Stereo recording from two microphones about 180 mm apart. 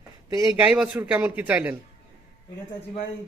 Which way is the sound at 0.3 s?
20° right (ahead or behind).